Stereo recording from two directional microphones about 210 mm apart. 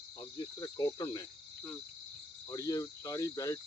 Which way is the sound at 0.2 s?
20° left (ahead or behind).